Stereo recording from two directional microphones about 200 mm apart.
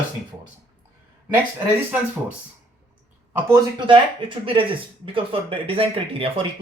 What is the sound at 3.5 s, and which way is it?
Speech, 20° right (ahead or behind).